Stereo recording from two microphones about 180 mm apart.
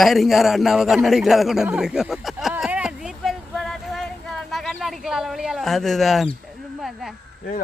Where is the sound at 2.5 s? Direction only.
5° right (ahead or behind).